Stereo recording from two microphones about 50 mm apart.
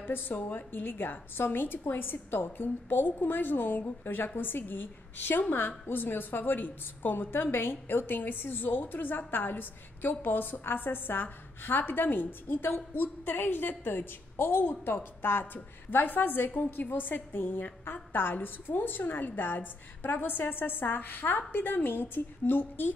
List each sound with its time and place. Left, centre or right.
0.0 s a woman's voice: left